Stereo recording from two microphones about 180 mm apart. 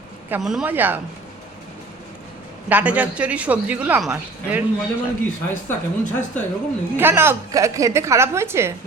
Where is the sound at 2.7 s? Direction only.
10° right (ahead or behind).